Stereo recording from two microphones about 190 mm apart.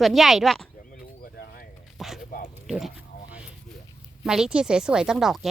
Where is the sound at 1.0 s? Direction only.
55° left (ahead or behind).